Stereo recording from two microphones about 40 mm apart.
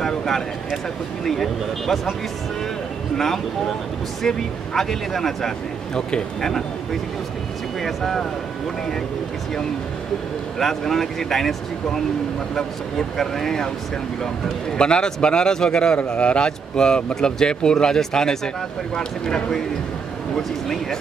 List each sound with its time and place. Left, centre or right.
0.0 s speech: centre
4.3 s speech: centre
7.8 s speech: centre
10.6 s speech: centre
13.2 s speech: centre
14.8 s speech: left